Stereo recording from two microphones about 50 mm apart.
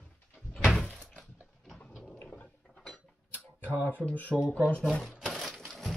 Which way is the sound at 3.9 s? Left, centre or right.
Left.